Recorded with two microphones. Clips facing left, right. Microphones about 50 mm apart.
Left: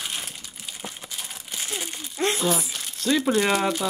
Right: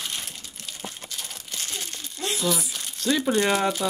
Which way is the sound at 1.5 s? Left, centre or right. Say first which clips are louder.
Left 3 dB; centre.